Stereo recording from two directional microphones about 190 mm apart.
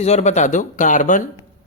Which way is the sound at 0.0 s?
35° left (ahead or behind).